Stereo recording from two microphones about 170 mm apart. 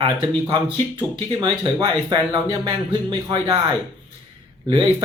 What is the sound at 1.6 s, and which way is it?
Speech, 25° right (ahead or behind).